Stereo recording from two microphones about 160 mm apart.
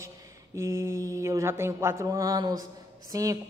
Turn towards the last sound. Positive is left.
turn(degrees=-20)  # may be behind; listen again after turning